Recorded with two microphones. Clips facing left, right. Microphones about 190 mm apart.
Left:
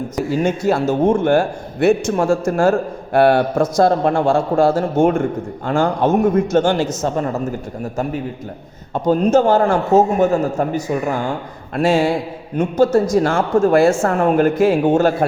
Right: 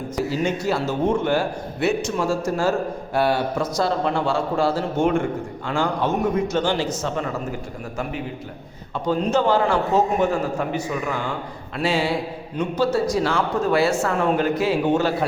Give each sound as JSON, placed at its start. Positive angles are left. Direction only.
{"t": 0.3, "sound": "a man's voice", "side_deg": 50}
{"t": 9.0, "sound": "a man's voice", "side_deg": 45}